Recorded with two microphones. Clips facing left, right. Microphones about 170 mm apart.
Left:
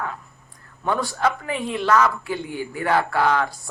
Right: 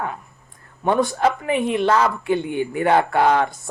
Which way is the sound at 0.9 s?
20° right (ahead or behind).